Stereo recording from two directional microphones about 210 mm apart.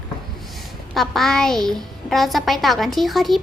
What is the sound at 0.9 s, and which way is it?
A child's voice, centre (ahead or behind).